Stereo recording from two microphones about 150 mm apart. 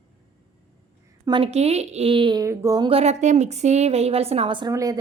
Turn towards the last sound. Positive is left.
turn(degrees=-25)  # may be behind; listen again after turning